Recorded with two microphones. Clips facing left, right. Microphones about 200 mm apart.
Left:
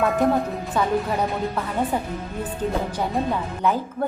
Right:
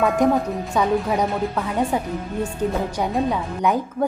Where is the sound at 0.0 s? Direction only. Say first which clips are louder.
Right 2 dB; centre (ahead or behind).